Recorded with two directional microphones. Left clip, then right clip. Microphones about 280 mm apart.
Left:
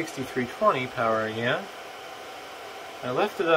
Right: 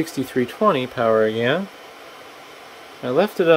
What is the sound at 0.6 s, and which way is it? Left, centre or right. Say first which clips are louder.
Speech: right 5 dB; right.